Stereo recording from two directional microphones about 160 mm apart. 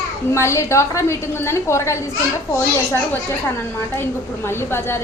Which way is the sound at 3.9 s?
15° left (ahead or behind).